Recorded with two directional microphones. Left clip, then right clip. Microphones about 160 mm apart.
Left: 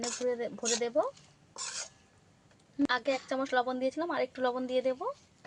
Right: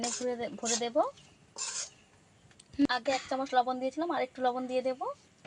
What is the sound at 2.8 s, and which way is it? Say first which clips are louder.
Speech: right 1 dB; centre (ahead or behind).